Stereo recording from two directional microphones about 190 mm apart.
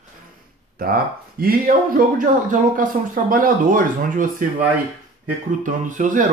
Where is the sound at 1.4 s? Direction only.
50° right (ahead or behind).